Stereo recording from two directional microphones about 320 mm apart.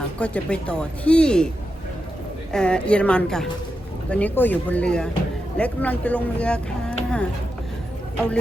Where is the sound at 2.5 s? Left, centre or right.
Centre.